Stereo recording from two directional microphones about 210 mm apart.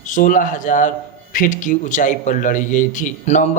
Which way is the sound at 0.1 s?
40° left (ahead or behind).